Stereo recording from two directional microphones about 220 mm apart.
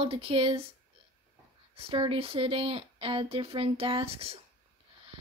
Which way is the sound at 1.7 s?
25° right (ahead or behind).